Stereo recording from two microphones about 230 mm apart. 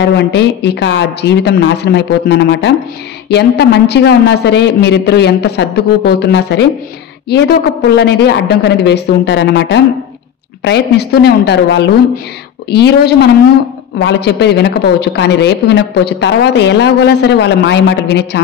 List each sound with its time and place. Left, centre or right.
0.0 s a woman's voice: left